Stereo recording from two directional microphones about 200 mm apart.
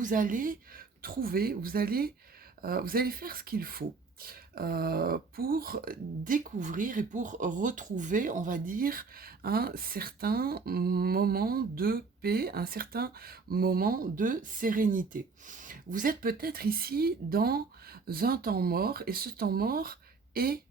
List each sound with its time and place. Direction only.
0.0 s speech: 40° right (ahead or behind)